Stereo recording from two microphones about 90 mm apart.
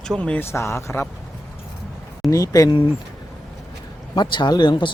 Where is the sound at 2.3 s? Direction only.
40° left (ahead or behind).